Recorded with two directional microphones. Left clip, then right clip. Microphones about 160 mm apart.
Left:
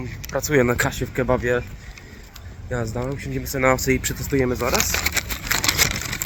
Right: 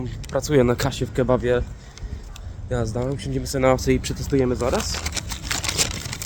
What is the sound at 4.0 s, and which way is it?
Speech, 5° right (ahead or behind).